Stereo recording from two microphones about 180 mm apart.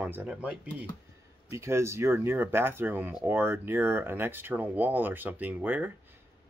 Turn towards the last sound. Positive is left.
turn(degrees=-10)  # may be behind; listen again after turning